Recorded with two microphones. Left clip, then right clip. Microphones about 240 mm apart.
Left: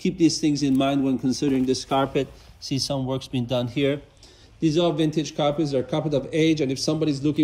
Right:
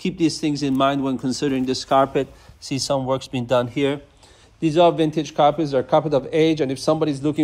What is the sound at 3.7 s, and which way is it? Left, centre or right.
A man's voice, right.